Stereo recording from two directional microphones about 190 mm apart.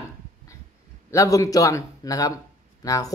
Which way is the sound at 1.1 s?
15° left (ahead or behind).